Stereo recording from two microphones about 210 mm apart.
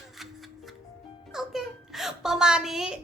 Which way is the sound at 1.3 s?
Centre (ahead or behind).